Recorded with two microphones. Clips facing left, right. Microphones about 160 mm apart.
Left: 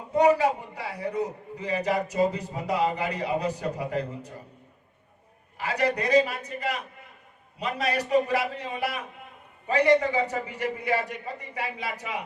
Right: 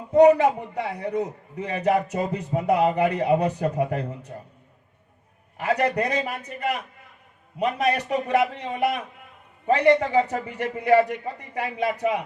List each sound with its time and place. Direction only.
0.2 s a man's voice: 60° right (ahead or behind)
5.5 s a man's voice: 55° right (ahead or behind)
9.6 s a man's voice: 60° right (ahead or behind)